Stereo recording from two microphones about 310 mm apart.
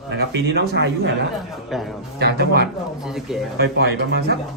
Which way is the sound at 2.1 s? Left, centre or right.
Right.